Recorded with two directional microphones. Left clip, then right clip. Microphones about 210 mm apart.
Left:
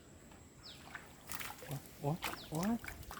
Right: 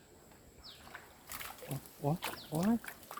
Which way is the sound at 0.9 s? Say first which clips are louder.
Left 1 dB; 30° left (ahead or behind).